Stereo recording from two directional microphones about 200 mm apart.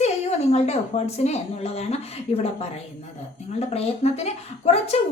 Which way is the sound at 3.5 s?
30° left (ahead or behind).